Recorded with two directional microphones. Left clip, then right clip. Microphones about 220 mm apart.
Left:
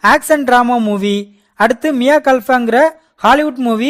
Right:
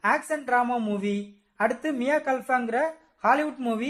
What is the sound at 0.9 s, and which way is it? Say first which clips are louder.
Speech: left 13 dB; 50° left (ahead or behind).